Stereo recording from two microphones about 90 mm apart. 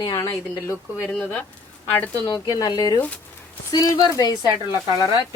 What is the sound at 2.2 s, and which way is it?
Speech, 50° left (ahead or behind).